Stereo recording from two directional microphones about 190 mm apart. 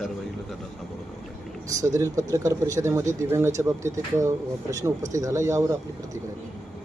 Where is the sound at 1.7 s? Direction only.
15° right (ahead or behind).